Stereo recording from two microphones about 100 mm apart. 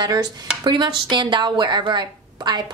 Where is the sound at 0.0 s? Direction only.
40° right (ahead or behind).